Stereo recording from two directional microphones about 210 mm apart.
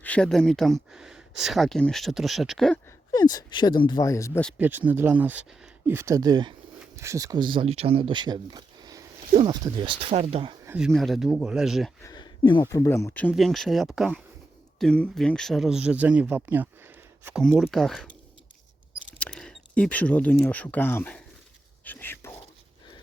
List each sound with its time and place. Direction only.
0.0 s speech: 5° left (ahead or behind)
3.1 s speech: 20° left (ahead or behind)
4.4 s speech: 5° right (ahead or behind); by 10.6 s 25° right (ahead or behind)
10.7 s speech: centre (ahead or behind)
12.0 s a sound: 20° left (ahead or behind)
12.7 s speech: 15° left (ahead or behind)
19.2 s speech: 5° left (ahead or behind)
21.8 s whispering: 10° left (ahead or behind)